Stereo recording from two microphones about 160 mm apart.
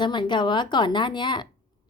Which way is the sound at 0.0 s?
30° left (ahead or behind).